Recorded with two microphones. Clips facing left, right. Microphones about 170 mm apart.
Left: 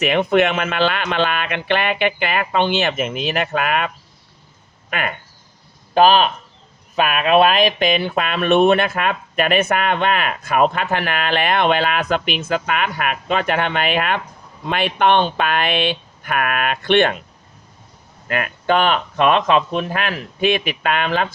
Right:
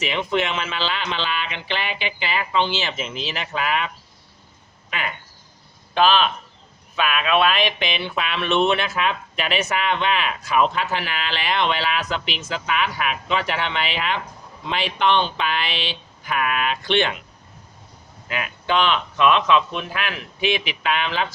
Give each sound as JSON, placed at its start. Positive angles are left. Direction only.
{"t": 0.0, "sound": "speech", "side_deg": 55}
{"t": 5.9, "sound": "speech", "side_deg": 45}
{"t": 18.3, "sound": "speech", "side_deg": 55}